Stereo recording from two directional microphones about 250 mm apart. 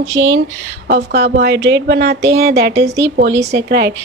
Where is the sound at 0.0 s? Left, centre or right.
Right.